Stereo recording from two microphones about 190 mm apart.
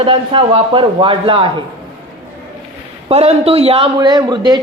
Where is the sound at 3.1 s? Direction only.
35° right (ahead or behind).